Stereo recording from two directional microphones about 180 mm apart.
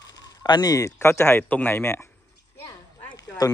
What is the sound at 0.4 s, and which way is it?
A man's voice, 20° left (ahead or behind).